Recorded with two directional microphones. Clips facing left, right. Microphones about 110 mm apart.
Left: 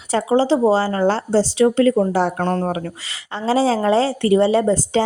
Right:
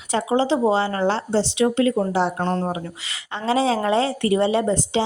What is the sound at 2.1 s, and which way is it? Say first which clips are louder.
Speech: left 3 dB; 50° left (ahead or behind).